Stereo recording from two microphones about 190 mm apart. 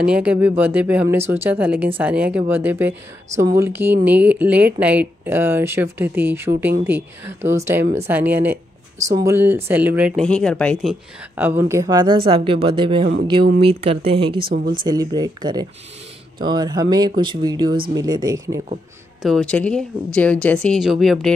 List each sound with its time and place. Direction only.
0.0 s speech: 5° right (ahead or behind)
10.2 s speech: 5° left (ahead or behind); by 14.5 s 25° right (ahead or behind)
14.5 s speech: 50° right (ahead or behind)
14.9 s speech: 20° right (ahead or behind)
19.2 s speech: 5° left (ahead or behind)